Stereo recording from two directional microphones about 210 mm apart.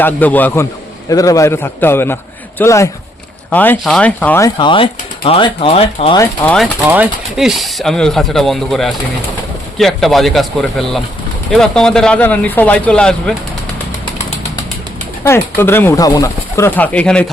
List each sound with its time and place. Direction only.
0.0 s speech: 10° left (ahead or behind); by 6.1 s 30° left (ahead or behind)
6.1 s speech: 5° left (ahead or behind)
6.8 s speech: 10° right (ahead or behind)
15.2 s speech: 10° left (ahead or behind)